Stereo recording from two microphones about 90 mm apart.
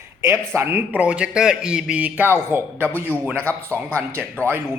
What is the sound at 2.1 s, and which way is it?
Speech, 25° right (ahead or behind).